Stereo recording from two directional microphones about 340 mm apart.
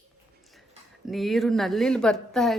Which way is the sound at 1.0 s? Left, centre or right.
Centre.